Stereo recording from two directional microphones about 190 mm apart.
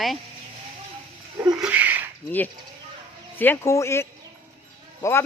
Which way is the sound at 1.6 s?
5° right (ahead or behind).